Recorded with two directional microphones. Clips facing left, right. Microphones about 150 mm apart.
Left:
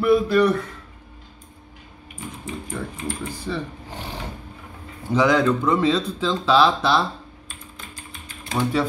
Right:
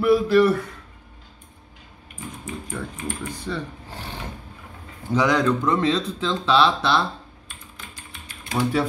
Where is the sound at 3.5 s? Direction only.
10° left (ahead or behind).